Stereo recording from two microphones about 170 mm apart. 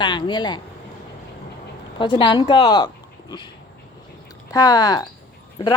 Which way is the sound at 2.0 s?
30° left (ahead or behind).